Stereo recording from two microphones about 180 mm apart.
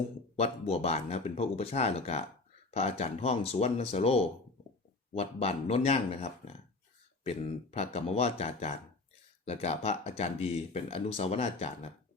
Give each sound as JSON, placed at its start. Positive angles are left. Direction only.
{"t": 0.3, "sound": "speech", "side_deg": 35}